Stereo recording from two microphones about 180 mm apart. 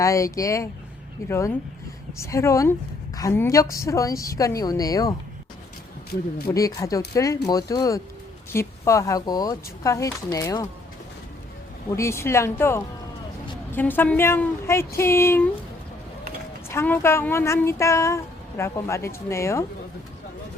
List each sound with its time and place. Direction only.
0.0 s speech: 15° left (ahead or behind)
6.5 s speech: 20° left (ahead or behind)
11.9 s speech: 15° left (ahead or behind)
16.6 s speech: 10° left (ahead or behind)